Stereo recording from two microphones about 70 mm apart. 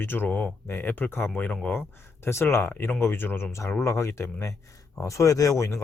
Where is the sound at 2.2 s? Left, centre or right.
Left.